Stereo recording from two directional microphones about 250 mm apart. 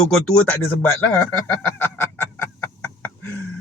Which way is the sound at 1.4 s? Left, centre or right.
Centre.